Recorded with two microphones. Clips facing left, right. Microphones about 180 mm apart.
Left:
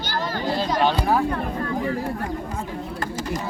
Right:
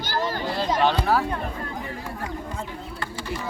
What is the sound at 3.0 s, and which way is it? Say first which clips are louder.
Bird: left 4 dB; 40° left (ahead or behind).